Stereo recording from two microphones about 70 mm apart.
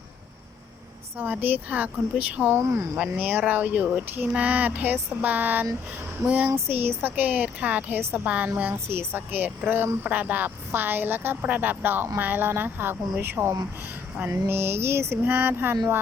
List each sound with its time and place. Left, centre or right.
1.2 s speech: right
2.6 s a sound: right
3.0 s speech: right
6.7 s speech: right
8.7 s speech: right
14.4 s a sound: right